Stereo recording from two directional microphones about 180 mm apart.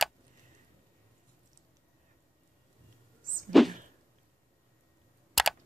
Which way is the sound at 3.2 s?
50° right (ahead or behind).